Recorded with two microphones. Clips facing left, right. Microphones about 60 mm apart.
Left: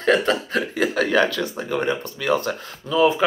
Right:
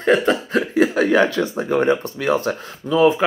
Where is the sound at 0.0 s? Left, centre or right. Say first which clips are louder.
Right 2 dB; centre.